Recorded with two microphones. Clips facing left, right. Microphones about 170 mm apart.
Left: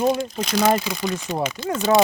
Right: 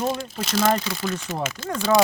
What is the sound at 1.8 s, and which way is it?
Speech, 20° left (ahead or behind).